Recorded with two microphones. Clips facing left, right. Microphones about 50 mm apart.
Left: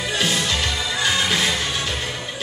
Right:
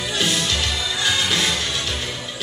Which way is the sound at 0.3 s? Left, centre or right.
Left.